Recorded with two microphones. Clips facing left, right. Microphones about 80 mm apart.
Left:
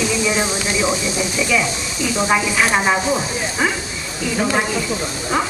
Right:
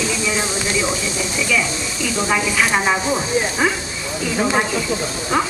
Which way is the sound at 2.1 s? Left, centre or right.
Centre.